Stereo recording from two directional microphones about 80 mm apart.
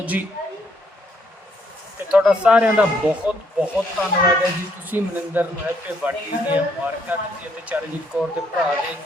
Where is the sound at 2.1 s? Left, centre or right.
Centre.